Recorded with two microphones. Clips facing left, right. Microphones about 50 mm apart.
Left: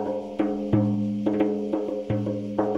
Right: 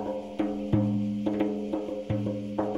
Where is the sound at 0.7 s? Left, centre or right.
Centre.